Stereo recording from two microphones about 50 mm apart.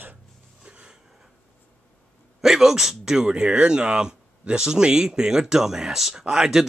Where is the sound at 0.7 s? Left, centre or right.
Right.